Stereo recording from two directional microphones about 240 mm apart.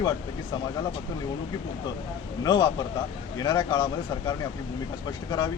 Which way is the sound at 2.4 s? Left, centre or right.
Centre.